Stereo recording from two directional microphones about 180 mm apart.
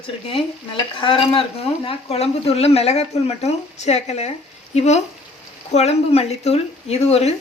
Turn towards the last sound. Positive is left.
turn(degrees=35)  # may be behind; listen again after turning